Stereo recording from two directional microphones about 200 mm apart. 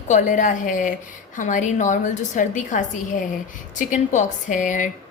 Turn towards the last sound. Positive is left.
turn(degrees=40)  # may be behind; listen again after turning